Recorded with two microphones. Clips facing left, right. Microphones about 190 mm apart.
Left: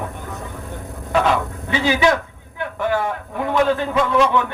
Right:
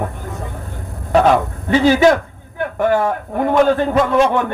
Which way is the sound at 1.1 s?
45° right (ahead or behind).